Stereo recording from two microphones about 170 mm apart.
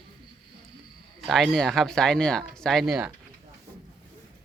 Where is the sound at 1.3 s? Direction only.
Centre (ahead or behind).